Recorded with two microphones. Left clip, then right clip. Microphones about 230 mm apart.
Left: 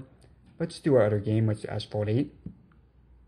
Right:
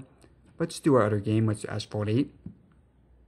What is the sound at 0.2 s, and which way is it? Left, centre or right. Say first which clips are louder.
Speech: right 2 dB; right.